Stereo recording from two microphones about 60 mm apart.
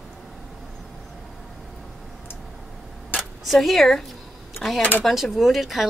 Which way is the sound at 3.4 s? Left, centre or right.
Centre.